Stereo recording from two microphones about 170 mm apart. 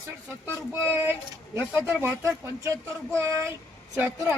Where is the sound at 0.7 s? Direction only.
10° right (ahead or behind).